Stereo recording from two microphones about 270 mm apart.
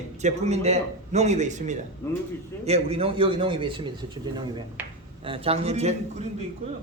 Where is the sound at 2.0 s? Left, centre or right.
Centre.